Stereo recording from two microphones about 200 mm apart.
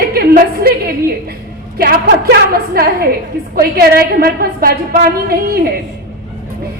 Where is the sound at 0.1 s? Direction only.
50° right (ahead or behind).